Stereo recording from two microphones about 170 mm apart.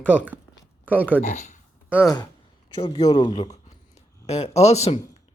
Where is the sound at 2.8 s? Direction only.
30° left (ahead or behind).